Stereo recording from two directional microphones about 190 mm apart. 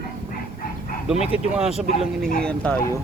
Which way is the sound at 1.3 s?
5° right (ahead or behind).